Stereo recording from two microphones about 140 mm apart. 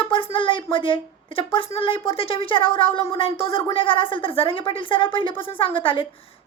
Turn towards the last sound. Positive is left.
turn(degrees=40)  # may be behind; listen again after turning